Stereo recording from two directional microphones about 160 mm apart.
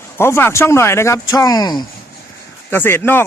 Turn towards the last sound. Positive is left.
turn(degrees=15)  # may be behind; listen again after turning